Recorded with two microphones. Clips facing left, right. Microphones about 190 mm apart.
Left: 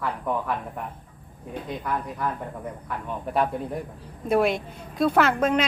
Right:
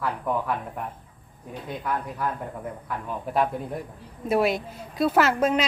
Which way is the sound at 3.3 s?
Centre (ahead or behind).